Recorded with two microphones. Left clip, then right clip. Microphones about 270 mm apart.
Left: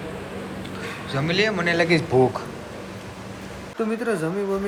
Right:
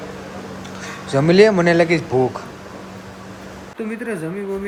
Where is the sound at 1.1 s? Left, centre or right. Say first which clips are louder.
Right 10 dB; right.